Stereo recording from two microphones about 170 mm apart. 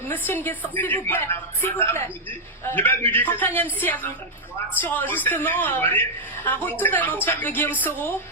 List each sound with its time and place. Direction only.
0.1 s a woman's voice: 10° left (ahead or behind)